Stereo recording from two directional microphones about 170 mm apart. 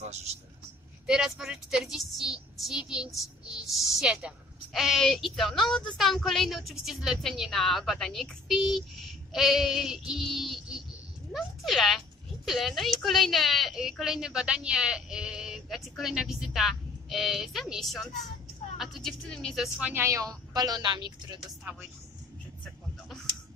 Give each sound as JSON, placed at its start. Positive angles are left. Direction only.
{"t": 0.0, "sound": "speech", "side_deg": -40}
{"t": 1.0, "sound": "a woman's voice", "side_deg": -5}